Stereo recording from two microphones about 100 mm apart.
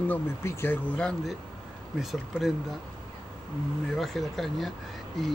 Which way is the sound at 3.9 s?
Centre (ahead or behind).